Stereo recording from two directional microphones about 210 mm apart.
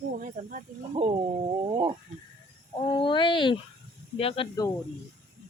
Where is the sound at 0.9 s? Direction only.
25° right (ahead or behind).